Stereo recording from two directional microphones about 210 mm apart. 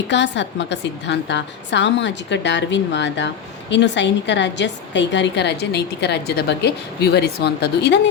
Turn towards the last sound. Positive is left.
turn(degrees=50)  # may be behind; listen again after turning